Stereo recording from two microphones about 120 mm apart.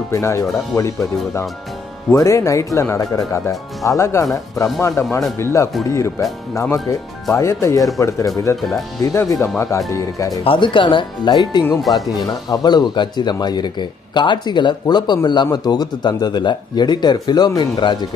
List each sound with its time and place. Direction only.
0.1 s speech: 25° left (ahead or behind)
10.4 s speech: 45° left (ahead or behind)